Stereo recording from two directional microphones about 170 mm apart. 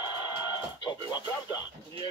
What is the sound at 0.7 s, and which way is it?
Speech, 25° left (ahead or behind).